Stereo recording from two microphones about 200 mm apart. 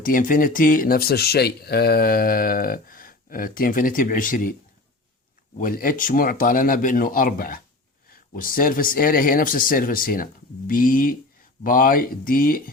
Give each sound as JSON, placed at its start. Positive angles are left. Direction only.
{"t": 0.0, "sound": "speech", "side_deg": 45}
{"t": 5.5, "sound": "speech", "side_deg": 45}